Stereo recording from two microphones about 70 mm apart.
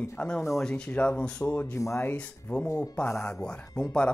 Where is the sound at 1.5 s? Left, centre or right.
Left.